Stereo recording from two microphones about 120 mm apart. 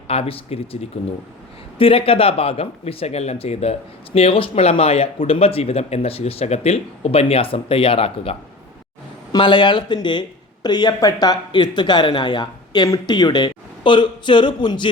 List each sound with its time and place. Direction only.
0.1 s speech: 55° left (ahead or behind)
1.8 s speech: 50° left (ahead or behind)
9.3 s speech: 40° left (ahead or behind)